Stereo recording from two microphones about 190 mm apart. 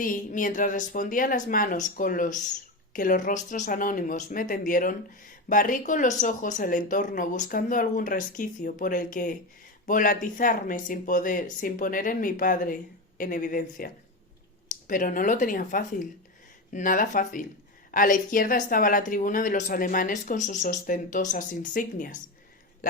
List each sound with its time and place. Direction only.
0.0 s speech: 45° left (ahead or behind)